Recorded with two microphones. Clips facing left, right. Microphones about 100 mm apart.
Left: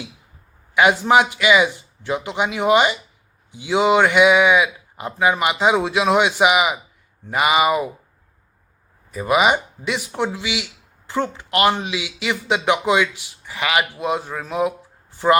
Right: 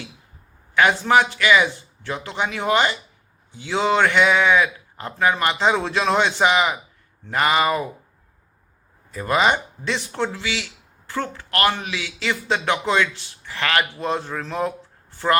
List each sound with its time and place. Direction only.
0.7 s speech: 15° left (ahead or behind)
9.1 s speech: 10° left (ahead or behind)